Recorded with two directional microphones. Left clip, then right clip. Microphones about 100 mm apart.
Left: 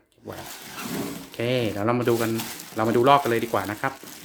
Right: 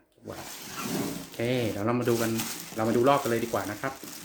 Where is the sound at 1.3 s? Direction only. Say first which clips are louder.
Left 5 dB; 25° left (ahead or behind); by 3.9 s 45° left (ahead or behind).